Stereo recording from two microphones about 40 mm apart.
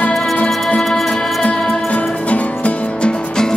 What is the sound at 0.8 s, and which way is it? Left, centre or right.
Music, centre.